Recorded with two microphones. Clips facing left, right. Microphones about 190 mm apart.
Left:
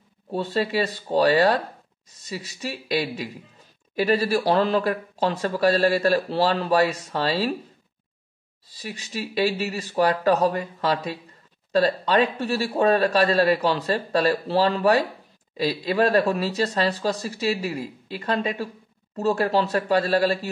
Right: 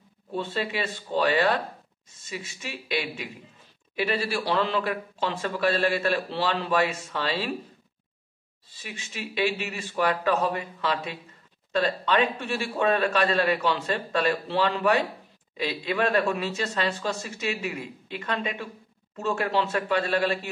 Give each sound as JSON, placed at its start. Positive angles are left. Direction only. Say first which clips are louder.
{"t": 0.3, "sound": "speech", "louder": "left 5 dB", "side_deg": 40}
{"t": 8.6, "sound": "speech", "louder": "left 5 dB", "side_deg": 40}